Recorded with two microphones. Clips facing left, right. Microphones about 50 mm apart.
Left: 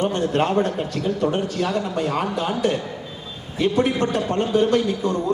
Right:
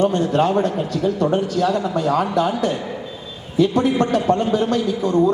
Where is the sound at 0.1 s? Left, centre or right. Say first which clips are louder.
Right 3 dB; left.